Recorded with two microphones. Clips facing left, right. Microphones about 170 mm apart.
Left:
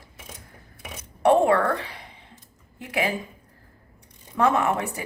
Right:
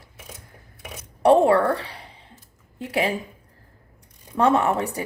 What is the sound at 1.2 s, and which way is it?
A woman's voice, 35° right (ahead or behind).